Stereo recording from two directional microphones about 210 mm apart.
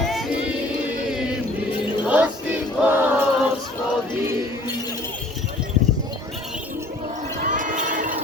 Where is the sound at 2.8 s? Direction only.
10° right (ahead or behind).